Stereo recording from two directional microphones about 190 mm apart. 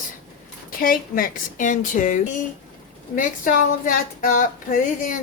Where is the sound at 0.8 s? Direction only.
50° left (ahead or behind).